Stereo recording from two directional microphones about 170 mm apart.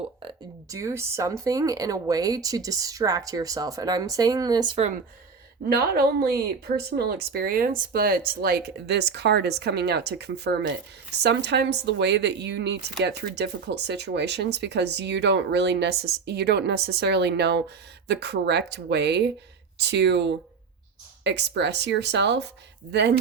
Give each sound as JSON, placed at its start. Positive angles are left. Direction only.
{"t": 0.2, "sound": "a sound", "side_deg": -30}
{"t": 0.8, "sound": "speech", "side_deg": -15}
{"t": 5.6, "sound": "speech", "side_deg": -65}
{"t": 13.0, "sound": "speech", "side_deg": -80}